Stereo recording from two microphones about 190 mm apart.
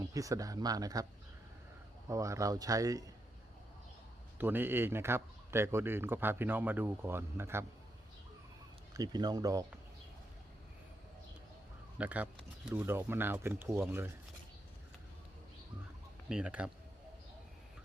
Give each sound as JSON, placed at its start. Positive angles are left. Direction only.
{"t": 0.0, "sound": "speech", "side_deg": -15}
{"t": 2.0, "sound": "speech", "side_deg": -15}
{"t": 4.4, "sound": "speech", "side_deg": -10}
{"t": 8.9, "sound": "speech", "side_deg": -20}
{"t": 11.9, "sound": "speech", "side_deg": -10}
{"t": 16.3, "sound": "speech", "side_deg": -5}